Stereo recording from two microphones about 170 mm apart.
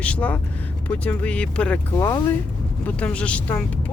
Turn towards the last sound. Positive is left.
turn(degrees=5)  # may be behind; listen again after turning